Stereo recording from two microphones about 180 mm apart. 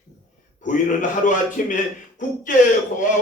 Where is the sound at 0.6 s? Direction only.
45° left (ahead or behind).